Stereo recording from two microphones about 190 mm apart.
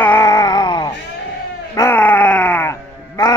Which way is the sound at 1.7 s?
10° left (ahead or behind).